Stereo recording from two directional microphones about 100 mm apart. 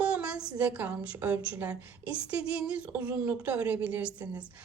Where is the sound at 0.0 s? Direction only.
10° right (ahead or behind).